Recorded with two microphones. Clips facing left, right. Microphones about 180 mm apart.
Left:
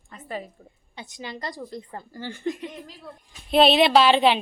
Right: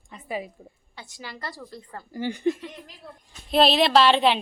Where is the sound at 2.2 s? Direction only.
15° right (ahead or behind).